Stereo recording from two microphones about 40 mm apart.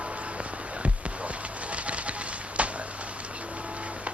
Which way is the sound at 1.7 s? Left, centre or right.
Right.